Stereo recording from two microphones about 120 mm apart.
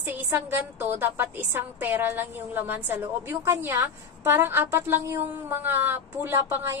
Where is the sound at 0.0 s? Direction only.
15° right (ahead or behind).